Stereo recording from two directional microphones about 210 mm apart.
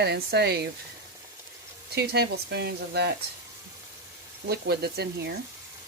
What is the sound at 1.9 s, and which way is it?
Speech, 50° right (ahead or behind).